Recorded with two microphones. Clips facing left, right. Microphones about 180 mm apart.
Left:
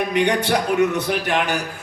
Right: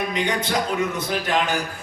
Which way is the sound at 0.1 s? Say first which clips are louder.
Left 5 dB; 70° left (ahead or behind).